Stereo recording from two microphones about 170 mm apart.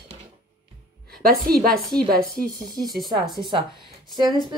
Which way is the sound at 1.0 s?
65° right (ahead or behind).